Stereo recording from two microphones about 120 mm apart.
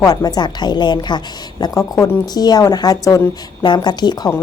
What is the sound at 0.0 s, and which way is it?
Speech, 30° left (ahead or behind).